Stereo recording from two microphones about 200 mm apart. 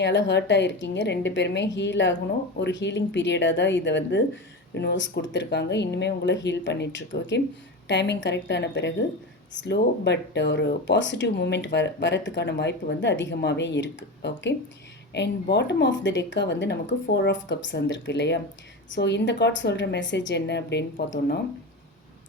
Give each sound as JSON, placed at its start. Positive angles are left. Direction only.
{"t": 0.0, "sound": "speech", "side_deg": 60}